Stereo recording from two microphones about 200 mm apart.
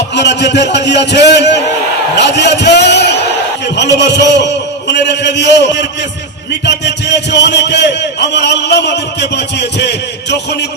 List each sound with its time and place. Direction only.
0.1 s a man's voice: 60° left (ahead or behind)